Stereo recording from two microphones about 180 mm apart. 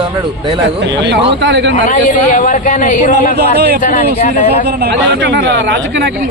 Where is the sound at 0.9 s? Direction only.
75° right (ahead or behind).